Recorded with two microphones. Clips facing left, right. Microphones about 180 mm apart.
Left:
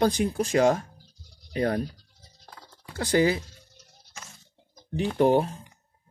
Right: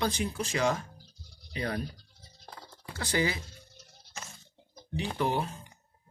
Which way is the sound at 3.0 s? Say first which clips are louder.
Left 8 dB; 45° left (ahead or behind).